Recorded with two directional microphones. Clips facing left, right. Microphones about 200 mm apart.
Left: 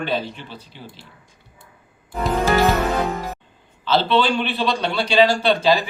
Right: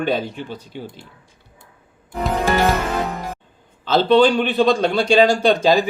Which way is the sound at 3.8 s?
45° right (ahead or behind).